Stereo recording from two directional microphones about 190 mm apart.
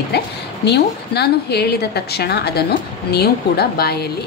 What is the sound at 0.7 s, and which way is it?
A woman's voice, 60° left (ahead or behind).